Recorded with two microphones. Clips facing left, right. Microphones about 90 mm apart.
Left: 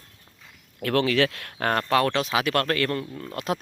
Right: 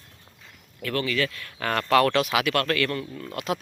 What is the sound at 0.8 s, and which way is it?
Speech, 65° left (ahead or behind).